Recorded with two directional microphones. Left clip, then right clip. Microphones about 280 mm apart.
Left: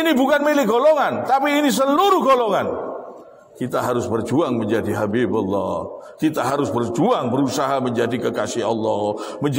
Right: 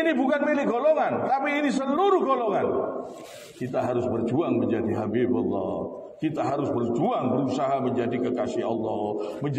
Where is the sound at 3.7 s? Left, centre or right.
Left.